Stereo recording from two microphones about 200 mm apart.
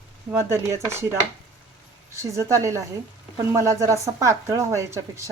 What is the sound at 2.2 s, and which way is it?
A woman's voice, 15° right (ahead or behind).